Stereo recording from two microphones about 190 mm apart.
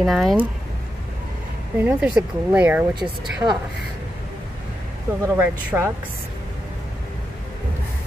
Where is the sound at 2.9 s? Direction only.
25° right (ahead or behind).